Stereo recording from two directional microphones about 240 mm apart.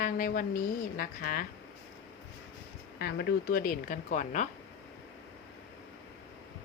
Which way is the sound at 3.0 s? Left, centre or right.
Left.